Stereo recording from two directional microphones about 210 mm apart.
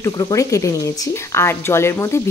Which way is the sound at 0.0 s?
15° left (ahead or behind).